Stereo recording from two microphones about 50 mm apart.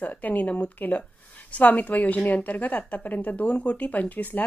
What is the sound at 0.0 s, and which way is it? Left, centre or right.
A woman's voice, left.